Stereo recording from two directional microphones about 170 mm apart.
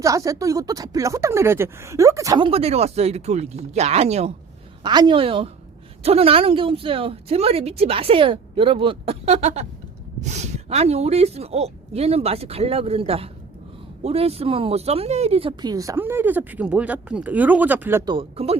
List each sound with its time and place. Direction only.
0.0 s speech: 20° right (ahead or behind)
2.5 s a woman's voice: 35° right (ahead or behind)
4.8 s a woman's voice: 25° right (ahead or behind); by 18.0 s 10° right (ahead or behind)
18.0 s a woman's voice: 30° right (ahead or behind)